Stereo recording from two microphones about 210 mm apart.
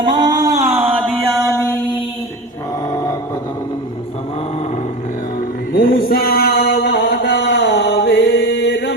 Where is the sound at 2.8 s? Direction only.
15° left (ahead or behind).